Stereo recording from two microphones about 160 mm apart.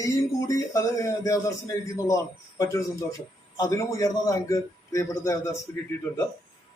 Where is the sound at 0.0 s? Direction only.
20° left (ahead or behind).